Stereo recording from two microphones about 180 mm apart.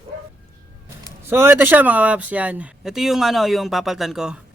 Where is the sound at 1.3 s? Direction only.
10° right (ahead or behind).